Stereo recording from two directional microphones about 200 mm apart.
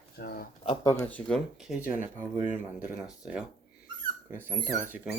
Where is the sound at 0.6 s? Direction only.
25° left (ahead or behind).